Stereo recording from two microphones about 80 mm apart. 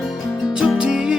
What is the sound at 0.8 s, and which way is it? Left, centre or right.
Music, centre.